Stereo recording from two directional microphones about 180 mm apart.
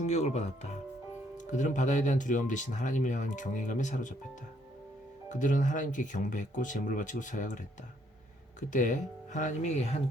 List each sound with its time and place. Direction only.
0.0 s speech: 35° left (ahead or behind)
5.3 s speech: 45° left (ahead or behind)
8.7 s speech: 45° left (ahead or behind)